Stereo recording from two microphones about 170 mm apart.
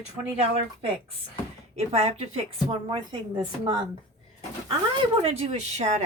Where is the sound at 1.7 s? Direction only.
35° right (ahead or behind).